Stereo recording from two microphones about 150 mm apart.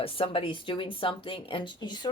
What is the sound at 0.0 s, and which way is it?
Speech, 40° left (ahead or behind).